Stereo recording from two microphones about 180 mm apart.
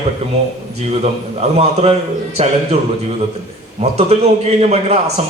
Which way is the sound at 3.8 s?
35° right (ahead or behind).